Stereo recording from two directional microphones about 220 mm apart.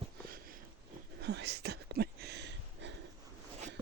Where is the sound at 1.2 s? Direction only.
50° right (ahead or behind).